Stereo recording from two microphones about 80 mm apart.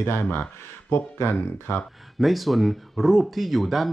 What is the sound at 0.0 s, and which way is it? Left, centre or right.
Speech, left.